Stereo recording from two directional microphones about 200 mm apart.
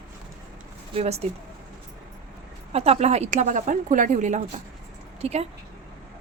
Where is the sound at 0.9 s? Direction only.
30° right (ahead or behind).